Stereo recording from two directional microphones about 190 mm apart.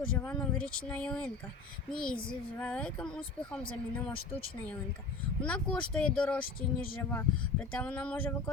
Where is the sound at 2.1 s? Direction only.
50° left (ahead or behind).